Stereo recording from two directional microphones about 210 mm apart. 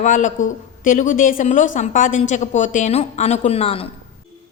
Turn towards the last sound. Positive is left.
turn(degrees=30)  # may be behind; listen again after turning